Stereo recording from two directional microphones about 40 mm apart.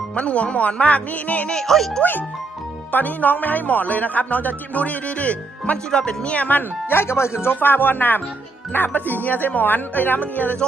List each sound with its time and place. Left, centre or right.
0.2 s speech: left
1.5 s speech: centre
2.9 s speech: left
5.7 s speech: centre
6.2 s speech: left
6.5 s speech: left
7.0 s speech: left